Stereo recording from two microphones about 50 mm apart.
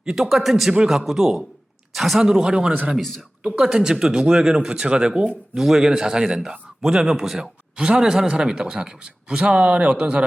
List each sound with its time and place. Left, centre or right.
0.0 s a man's voice: centre
5.5 s a man's voice: centre
7.8 s a man's voice: centre